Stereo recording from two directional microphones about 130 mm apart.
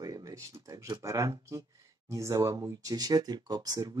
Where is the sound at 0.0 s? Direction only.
25° right (ahead or behind).